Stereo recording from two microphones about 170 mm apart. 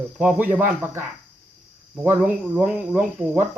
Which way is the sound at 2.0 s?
10° right (ahead or behind).